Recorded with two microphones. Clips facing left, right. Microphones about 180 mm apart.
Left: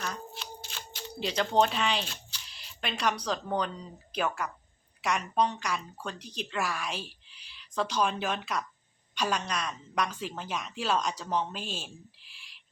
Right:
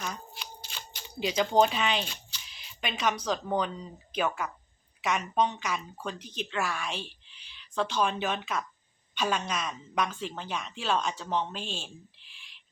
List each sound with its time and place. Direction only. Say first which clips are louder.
0.0 s shuffling cards: left 1 dB; 5° right (ahead or behind)
3.2 s a woman's voice: right 2 dB; 5° right (ahead or behind)